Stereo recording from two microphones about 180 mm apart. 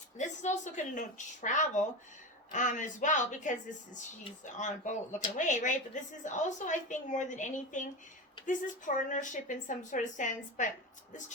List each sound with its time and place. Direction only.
0.2 s speech: 40° left (ahead or behind)